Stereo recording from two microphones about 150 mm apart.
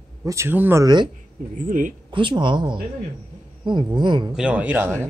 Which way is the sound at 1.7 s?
60° right (ahead or behind).